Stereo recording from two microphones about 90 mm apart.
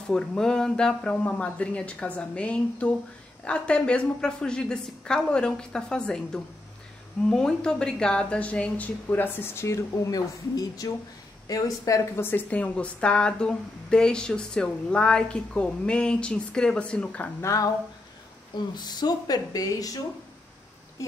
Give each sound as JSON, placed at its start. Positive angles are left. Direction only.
{"t": 0.0, "sound": "a woman's voice", "side_deg": 5}
{"t": 12.2, "sound": "a woman's voice", "side_deg": 25}
{"t": 17.4, "sound": "speech", "side_deg": 35}
{"t": 18.5, "sound": "speech", "side_deg": 50}